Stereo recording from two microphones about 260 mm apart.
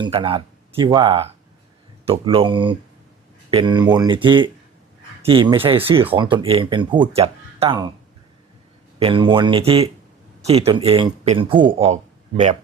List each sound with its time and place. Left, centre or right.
0.0 s speech: centre
9.0 s speech: centre